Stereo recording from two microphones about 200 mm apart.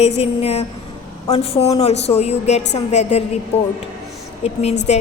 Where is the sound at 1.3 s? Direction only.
30° left (ahead or behind).